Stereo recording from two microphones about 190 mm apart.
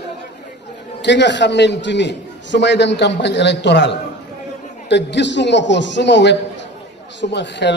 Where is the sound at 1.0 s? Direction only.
65° left (ahead or behind).